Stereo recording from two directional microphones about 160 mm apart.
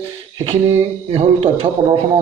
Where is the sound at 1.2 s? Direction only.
35° right (ahead or behind).